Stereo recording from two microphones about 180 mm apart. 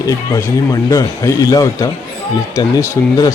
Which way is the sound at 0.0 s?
15° left (ahead or behind).